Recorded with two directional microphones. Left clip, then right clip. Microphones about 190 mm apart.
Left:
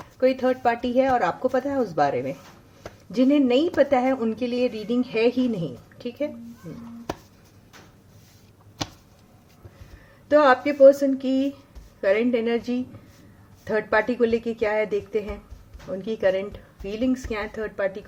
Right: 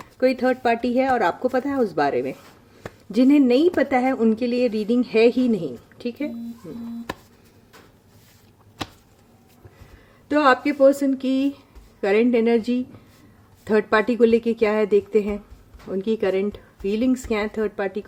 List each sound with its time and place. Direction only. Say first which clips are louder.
0.0 s speech: right 1 dB; 40° right (ahead or behind)
10.2 s speech: left 1 dB; 40° right (ahead or behind)